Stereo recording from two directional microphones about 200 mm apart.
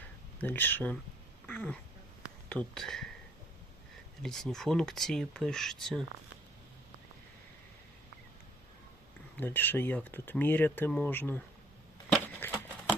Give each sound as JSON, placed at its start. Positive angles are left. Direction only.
{"t": 0.3, "sound": "speech", "side_deg": 10}
{"t": 1.5, "sound": "quack", "side_deg": 10}
{"t": 2.2, "sound": "speech", "side_deg": 5}
{"t": 4.2, "sound": "speech", "side_deg": 0}
{"t": 9.4, "sound": "speech", "side_deg": 10}
{"t": 12.1, "sound": "a sound", "side_deg": 10}